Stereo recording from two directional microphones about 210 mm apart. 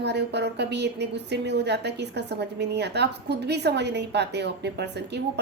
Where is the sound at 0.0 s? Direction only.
55° right (ahead or behind).